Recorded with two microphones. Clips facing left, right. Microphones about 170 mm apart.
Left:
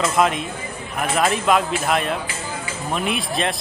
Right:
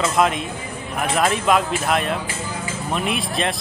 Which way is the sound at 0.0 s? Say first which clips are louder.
Even; centre (ahead or behind).